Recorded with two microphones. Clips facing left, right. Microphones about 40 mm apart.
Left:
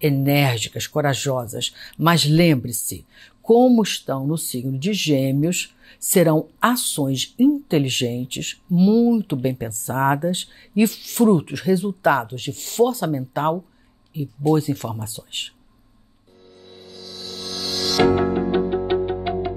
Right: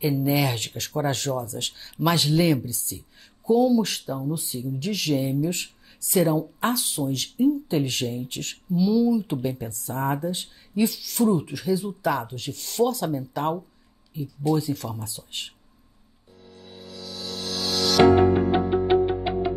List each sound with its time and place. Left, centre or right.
0.0 s speech: left
16.9 s music: centre